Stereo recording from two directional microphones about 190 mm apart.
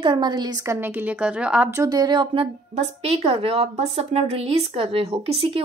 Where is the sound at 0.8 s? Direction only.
10° right (ahead or behind).